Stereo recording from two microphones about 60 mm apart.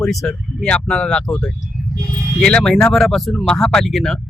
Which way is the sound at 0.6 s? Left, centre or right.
Centre.